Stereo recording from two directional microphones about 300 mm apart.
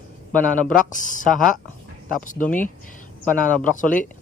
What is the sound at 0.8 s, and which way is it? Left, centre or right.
Speech, left.